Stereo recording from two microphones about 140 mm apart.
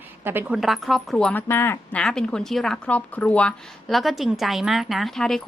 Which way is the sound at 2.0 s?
5° left (ahead or behind).